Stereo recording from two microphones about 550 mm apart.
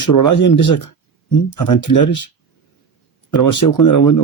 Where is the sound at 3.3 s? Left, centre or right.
Left.